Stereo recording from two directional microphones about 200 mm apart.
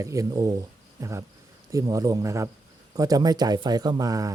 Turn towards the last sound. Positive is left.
turn(degrees=-20)  # may be behind; listen again after turning